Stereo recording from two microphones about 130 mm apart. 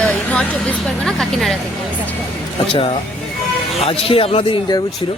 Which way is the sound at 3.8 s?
45° left (ahead or behind).